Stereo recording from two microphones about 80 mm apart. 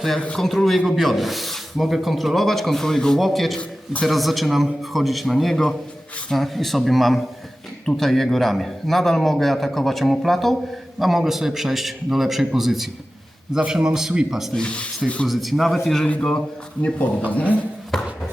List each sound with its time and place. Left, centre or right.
0.2 s a man's voice: centre
14.5 s speech: centre
15.3 s speech: centre
17.3 s speech: centre
17.9 s chopping: centre